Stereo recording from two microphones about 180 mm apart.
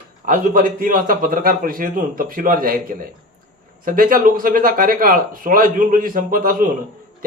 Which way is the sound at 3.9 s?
50° right (ahead or behind).